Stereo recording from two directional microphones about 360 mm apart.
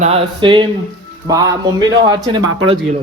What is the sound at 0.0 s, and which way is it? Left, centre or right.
Speech, centre.